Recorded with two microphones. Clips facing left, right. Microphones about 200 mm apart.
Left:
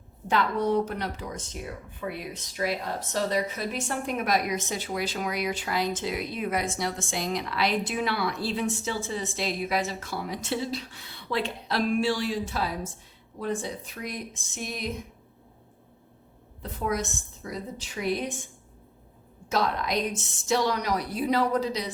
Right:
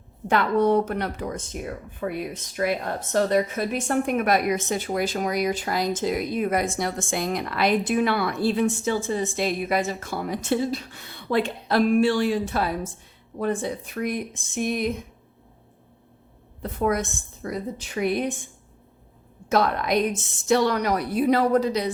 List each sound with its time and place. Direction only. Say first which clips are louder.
0.3 s a woman's voice: right 5 dB; 55° right (ahead or behind)
16.7 s a woman's voice: right 5 dB; 55° right (ahead or behind)
19.5 s a woman's voice: right 5 dB; 55° right (ahead or behind)